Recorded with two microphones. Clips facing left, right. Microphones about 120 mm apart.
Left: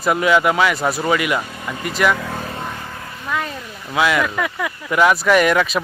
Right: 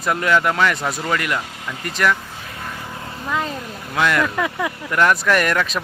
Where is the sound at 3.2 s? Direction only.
25° right (ahead or behind).